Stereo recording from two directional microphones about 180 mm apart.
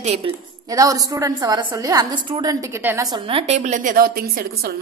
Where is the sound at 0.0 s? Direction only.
35° right (ahead or behind).